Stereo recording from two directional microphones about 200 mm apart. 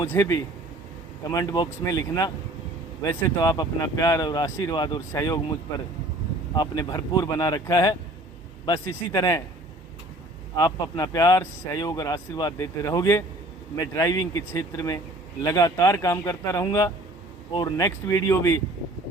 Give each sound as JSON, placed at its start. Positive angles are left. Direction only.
{"t": 0.0, "sound": "speech", "side_deg": 15}
{"t": 9.1, "sound": "speech", "side_deg": 15}
{"t": 10.6, "sound": "speech", "side_deg": 20}